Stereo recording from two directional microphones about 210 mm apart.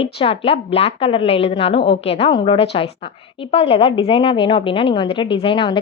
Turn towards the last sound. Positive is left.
turn(degrees=25)  # may be behind; listen again after turning